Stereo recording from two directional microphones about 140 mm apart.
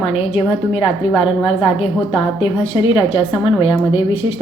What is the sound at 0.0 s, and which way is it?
A woman's voice, 40° left (ahead or behind).